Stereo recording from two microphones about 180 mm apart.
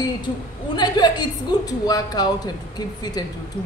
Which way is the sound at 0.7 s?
25° left (ahead or behind).